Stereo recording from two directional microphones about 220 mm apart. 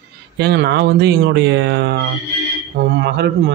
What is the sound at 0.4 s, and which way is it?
A man's voice, 50° right (ahead or behind).